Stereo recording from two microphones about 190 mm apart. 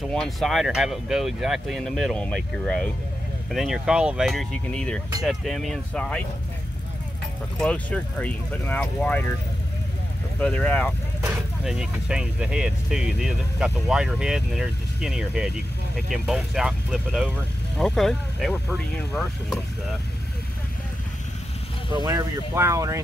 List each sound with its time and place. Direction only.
0.1 s speech: centre (ahead or behind)
7.6 s speech: 5° left (ahead or behind)
10.4 s speech: 10° left (ahead or behind)
11.6 s speech: 5° right (ahead or behind)
21.9 s speech: 20° right (ahead or behind)